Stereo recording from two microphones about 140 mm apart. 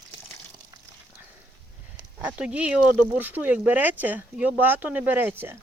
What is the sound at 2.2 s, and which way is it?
Speech, 10° right (ahead or behind).